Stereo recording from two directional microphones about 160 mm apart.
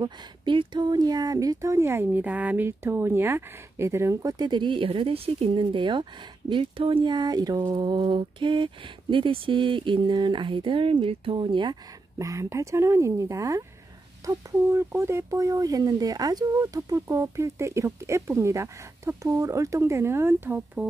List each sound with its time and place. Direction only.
0.0 s speech: 30° right (ahead or behind); by 20.8 s 15° right (ahead or behind)